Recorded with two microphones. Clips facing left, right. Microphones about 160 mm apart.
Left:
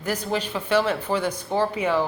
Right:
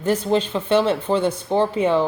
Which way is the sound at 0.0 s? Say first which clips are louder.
Right 7 dB; 25° right (ahead or behind).